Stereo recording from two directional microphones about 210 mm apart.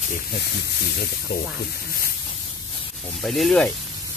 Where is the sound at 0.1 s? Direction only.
45° left (ahead or behind).